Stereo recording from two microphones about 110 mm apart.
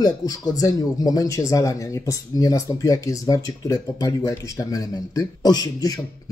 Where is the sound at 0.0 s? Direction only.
35° left (ahead or behind).